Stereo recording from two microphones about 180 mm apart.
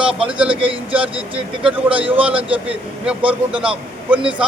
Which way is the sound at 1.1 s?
30° right (ahead or behind).